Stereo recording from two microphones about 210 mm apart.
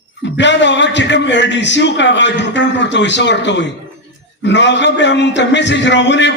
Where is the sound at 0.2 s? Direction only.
60° left (ahead or behind).